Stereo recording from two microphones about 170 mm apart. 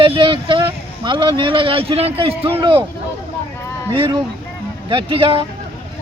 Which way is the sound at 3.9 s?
30° right (ahead or behind).